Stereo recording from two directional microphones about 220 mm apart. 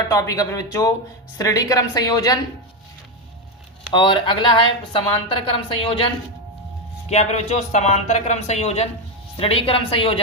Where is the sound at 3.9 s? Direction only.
20° left (ahead or behind).